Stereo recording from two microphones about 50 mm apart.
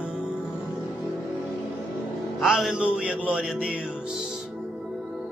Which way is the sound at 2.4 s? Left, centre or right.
Centre.